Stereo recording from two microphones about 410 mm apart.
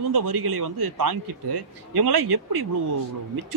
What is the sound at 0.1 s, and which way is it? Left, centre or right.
Speech, right.